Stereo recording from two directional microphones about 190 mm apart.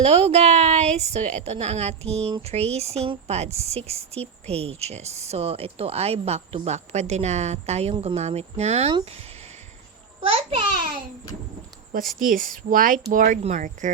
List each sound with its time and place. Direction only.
0.0 s a woman's voice: 35° right (ahead or behind)
10.2 s a sound: 30° right (ahead or behind)
12.2 s speech: 50° right (ahead or behind)